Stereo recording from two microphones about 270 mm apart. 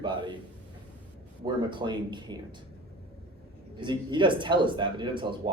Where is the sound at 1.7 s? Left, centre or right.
Centre.